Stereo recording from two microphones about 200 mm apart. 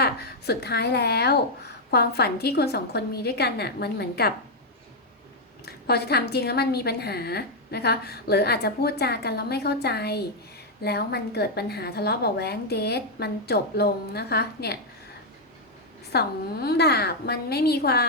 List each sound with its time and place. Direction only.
0.0 s a woman's voice: 55° left (ahead or behind)
5.6 s a woman's voice: 55° left (ahead or behind)
16.1 s a woman's voice: 55° left (ahead or behind)